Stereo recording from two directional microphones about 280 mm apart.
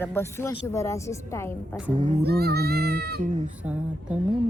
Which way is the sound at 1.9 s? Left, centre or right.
Right.